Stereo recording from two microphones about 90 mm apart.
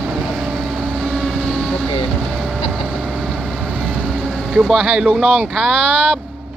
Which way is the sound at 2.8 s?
15° right (ahead or behind).